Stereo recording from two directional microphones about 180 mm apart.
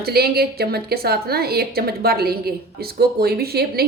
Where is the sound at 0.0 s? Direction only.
60° right (ahead or behind).